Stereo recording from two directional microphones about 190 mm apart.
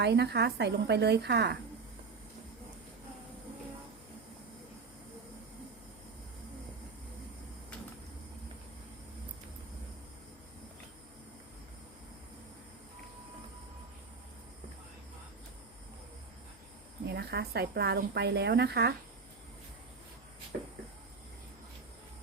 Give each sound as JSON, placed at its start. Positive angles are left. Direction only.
{"t": 0.0, "sound": "speech", "side_deg": -60}
{"t": 17.1, "sound": "speech", "side_deg": -60}